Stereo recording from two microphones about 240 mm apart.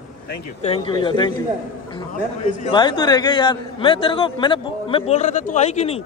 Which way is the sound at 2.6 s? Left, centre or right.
Centre.